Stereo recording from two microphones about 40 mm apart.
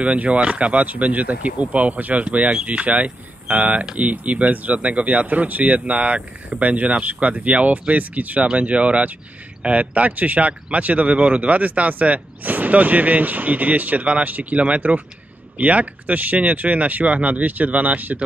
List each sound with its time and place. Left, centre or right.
0.0 s speech: right